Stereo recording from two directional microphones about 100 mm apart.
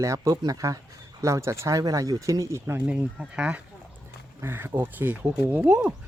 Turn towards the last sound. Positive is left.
turn(degrees=-20)  # may be behind; listen again after turning